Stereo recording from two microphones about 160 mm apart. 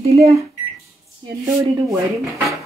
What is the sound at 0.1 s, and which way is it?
Speech, 40° right (ahead or behind).